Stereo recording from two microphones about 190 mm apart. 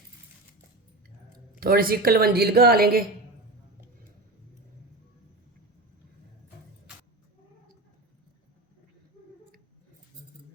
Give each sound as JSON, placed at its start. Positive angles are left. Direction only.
{"t": 1.5, "sound": "a woman's voice", "side_deg": -50}